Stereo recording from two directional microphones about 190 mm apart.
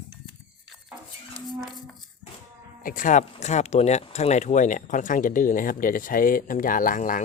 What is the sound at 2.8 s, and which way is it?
Speech, 45° left (ahead or behind).